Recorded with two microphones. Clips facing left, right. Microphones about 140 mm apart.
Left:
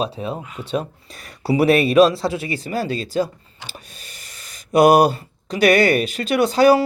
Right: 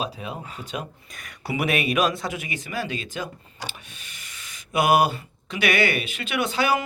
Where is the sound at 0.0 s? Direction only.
35° left (ahead or behind).